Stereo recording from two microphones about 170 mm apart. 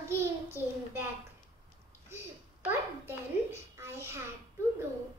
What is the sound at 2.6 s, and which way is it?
A child's voice, 10° right (ahead or behind).